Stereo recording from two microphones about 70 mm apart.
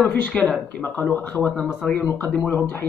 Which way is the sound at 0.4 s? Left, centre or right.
Left.